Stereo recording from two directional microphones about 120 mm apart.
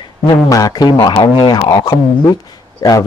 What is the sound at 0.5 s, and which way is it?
A man's voice, 30° left (ahead or behind).